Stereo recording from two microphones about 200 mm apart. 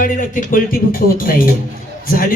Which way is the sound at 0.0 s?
45° left (ahead or behind).